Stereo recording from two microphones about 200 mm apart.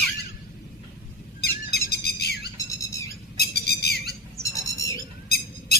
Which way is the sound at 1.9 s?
55° left (ahead or behind).